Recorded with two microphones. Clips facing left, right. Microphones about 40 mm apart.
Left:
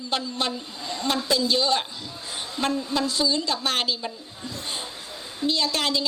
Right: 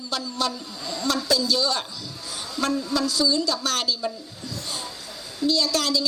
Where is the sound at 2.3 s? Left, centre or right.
Left.